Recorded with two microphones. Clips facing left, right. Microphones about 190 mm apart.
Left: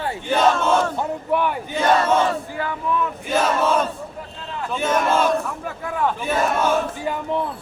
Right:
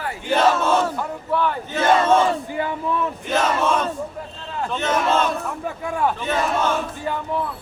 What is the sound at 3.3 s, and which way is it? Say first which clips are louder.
Speech: left 1 dB; 10° left (ahead or behind).